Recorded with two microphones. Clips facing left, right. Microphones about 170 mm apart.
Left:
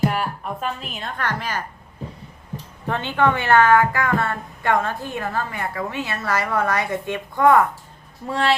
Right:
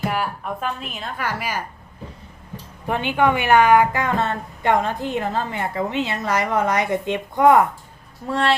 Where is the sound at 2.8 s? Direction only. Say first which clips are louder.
Right 1 dB; 15° right (ahead or behind).